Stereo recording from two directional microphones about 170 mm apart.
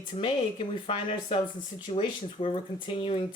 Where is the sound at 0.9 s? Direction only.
35° left (ahead or behind).